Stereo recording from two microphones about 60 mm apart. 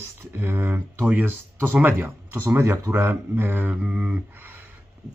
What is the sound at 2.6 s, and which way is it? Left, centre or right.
Speech, right.